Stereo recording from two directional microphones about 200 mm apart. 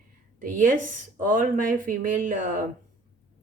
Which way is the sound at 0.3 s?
40° right (ahead or behind).